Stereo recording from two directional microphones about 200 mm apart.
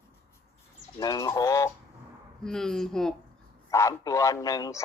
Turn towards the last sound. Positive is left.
turn(degrees=15)  # may be behind; listen again after turning